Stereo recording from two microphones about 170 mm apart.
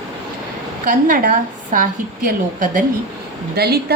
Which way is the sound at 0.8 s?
50° right (ahead or behind).